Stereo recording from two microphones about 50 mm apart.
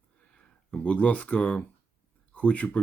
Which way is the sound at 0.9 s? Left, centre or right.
Left.